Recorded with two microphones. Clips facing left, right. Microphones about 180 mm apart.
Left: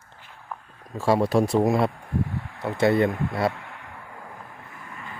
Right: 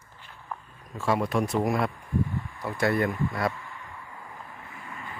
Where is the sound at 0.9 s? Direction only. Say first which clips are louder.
Left 5 dB; 35° left (ahead or behind).